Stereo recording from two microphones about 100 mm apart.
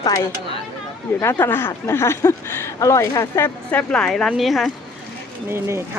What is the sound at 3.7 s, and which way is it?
Speech, 10° left (ahead or behind).